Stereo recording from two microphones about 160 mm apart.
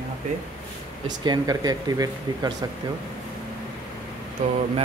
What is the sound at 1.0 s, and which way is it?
Speech, 25° right (ahead or behind).